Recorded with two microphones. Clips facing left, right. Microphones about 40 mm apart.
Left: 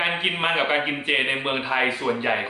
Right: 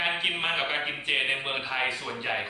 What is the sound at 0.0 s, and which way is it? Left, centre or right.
A man's voice, left.